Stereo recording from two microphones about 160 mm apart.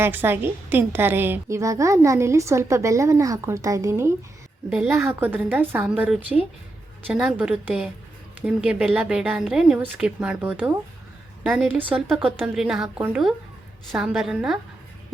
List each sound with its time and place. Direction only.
0.0 s a woman's voice: 15° right (ahead or behind)
4.7 s a woman's voice: 5° right (ahead or behind)